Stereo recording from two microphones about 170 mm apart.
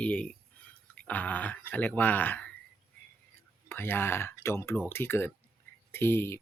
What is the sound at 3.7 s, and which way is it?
Speech, 15° left (ahead or behind).